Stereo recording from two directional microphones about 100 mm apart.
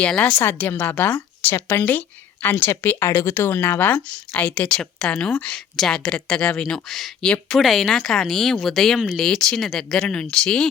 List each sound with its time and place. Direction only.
0.0 s a woman's voice: 15° left (ahead or behind)
3.1 s speech: 30° left (ahead or behind)
3.3 s speech: 20° left (ahead or behind)